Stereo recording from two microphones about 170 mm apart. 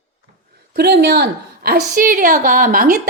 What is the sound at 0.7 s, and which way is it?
A woman's voice, 70° right (ahead or behind).